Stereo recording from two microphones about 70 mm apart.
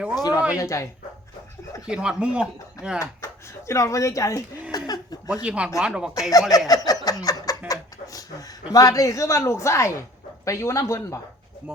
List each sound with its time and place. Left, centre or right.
0.2 s speech: left
0.6 s speech: left
1.9 s speech: centre
3.7 s speech: left
4.7 s chuckle: left
5.3 s speech: centre
6.5 s speech: left
6.8 s a sound: left
8.7 s speech: left